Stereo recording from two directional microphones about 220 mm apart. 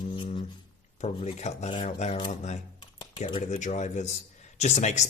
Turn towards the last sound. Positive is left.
turn(degrees=30)  # may be behind; listen again after turning